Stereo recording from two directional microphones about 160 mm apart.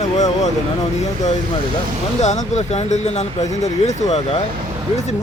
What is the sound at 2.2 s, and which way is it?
A man's voice, 45° left (ahead or behind).